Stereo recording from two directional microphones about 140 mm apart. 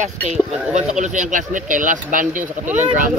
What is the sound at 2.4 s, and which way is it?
Speech, 15° right (ahead or behind).